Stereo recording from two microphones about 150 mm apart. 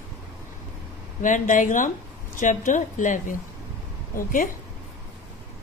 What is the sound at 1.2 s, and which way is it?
Speech, 60° left (ahead or behind).